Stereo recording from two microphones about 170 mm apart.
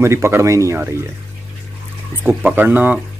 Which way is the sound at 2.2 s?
10° right (ahead or behind).